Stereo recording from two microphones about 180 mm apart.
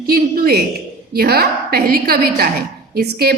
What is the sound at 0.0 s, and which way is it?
A woman's voice, 55° right (ahead or behind).